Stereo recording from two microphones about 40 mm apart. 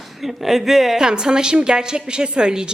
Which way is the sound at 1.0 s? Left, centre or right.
Centre.